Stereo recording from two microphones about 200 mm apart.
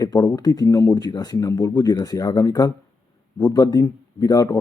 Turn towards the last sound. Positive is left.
turn(degrees=20)  # may be behind; listen again after turning